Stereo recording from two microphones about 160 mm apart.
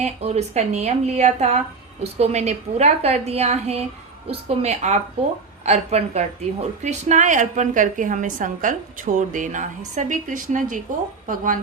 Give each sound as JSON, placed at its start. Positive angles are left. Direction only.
{"t": 0.0, "sound": "speech", "side_deg": -40}